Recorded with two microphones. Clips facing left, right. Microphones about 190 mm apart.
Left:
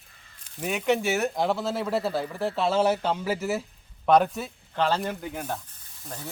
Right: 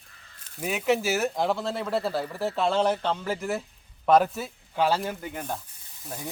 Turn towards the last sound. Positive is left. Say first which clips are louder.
# right 2 dB
turn(degrees=-10)  # may be behind; listen again after turning